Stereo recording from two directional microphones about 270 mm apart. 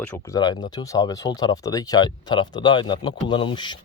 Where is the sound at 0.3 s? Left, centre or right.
Centre.